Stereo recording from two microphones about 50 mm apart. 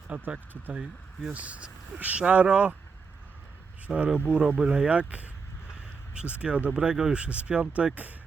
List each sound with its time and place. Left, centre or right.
0.1 s speech: right
0.7 s speech: centre
1.3 s speech: right
3.8 s speech: right
6.4 s speech: right